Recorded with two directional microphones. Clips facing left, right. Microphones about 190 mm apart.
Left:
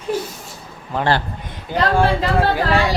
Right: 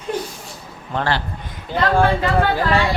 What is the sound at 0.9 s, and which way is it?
Speech, 5° left (ahead or behind).